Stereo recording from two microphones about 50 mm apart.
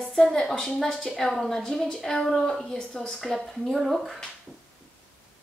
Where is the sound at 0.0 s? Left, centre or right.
Centre.